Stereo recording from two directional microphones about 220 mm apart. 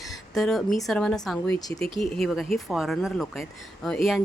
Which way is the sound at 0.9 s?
5° left (ahead or behind).